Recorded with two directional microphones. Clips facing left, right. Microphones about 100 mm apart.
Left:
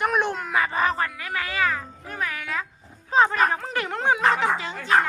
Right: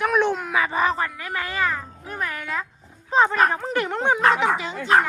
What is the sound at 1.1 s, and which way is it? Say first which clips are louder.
A child's voice: right 1 dB; centre (ahead or behind).